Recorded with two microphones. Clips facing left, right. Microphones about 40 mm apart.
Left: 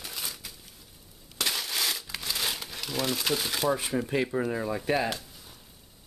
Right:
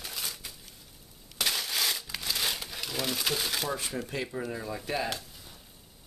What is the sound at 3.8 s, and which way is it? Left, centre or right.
Speech, centre.